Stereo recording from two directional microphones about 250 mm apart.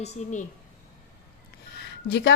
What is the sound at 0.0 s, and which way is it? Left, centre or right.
Speech, left.